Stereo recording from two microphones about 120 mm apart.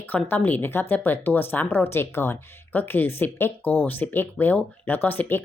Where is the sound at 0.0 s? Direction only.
15° left (ahead or behind).